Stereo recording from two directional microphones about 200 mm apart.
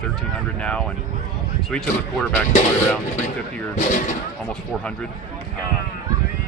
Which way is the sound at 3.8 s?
40° left (ahead or behind).